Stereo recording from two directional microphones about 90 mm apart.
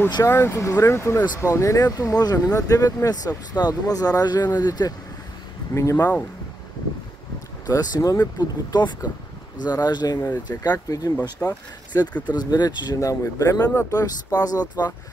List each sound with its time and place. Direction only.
0.2 s speech: 30° left (ahead or behind)
5.8 s speech: 35° left (ahead or behind)
7.6 s speech: 45° left (ahead or behind)
10.5 s speech: 35° left (ahead or behind)